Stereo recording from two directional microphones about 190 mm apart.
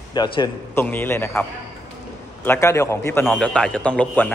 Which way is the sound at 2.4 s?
15° left (ahead or behind).